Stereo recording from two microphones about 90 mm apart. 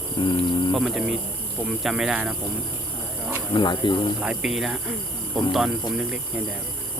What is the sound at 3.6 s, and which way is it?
Speech, 55° left (ahead or behind).